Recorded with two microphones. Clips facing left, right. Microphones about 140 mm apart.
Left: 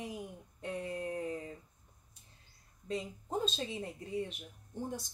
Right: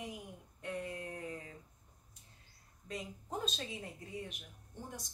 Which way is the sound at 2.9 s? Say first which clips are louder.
Left 5 dB; 25° left (ahead or behind).